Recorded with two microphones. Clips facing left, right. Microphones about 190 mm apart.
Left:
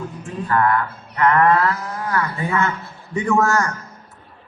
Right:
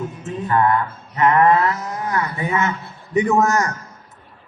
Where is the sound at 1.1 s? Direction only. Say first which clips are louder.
Right 1 dB; 20° right (ahead or behind).